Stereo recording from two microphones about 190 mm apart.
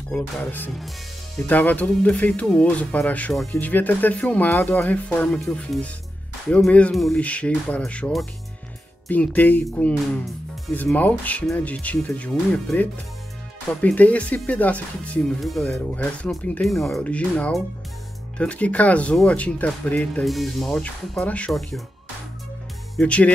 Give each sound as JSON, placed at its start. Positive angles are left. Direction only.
{"t": 0.1, "sound": "speech", "side_deg": 10}
{"t": 22.9, "sound": "speech", "side_deg": 5}